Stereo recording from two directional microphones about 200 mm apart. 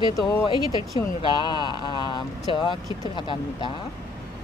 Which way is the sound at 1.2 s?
20° left (ahead or behind).